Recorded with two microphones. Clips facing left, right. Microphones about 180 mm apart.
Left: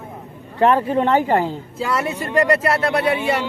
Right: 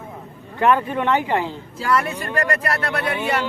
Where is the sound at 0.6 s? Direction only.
35° left (ahead or behind).